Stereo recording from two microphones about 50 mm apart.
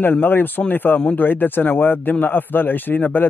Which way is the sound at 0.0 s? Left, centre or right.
Left.